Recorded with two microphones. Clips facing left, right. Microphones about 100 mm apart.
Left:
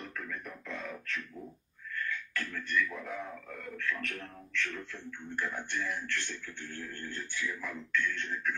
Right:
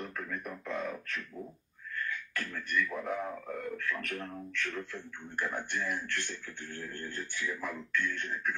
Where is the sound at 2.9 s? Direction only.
55° right (ahead or behind).